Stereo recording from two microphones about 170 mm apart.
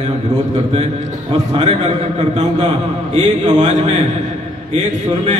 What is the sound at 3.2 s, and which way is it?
A man's voice, 45° right (ahead or behind).